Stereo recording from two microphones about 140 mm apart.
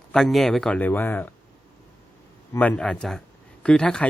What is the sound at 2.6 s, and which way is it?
A man's voice, 10° left (ahead or behind).